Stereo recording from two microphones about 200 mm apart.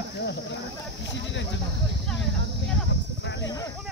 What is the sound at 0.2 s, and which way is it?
Speech, 60° left (ahead or behind).